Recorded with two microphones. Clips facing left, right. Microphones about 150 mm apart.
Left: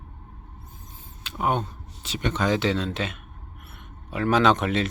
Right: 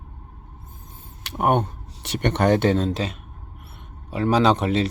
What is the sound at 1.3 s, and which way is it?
Speech, 60° right (ahead or behind).